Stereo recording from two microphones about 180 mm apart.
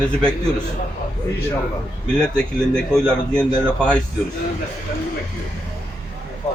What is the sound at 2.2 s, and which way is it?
A man's voice, 5° left (ahead or behind).